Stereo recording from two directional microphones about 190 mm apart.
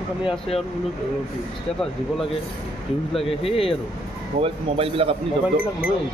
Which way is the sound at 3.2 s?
30° left (ahead or behind).